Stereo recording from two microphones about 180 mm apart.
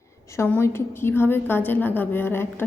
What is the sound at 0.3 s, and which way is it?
A woman's voice, 10° left (ahead or behind).